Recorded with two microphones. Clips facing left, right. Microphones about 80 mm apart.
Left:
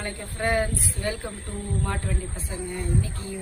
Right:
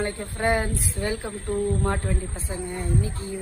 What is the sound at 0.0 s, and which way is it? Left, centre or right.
Speech, right.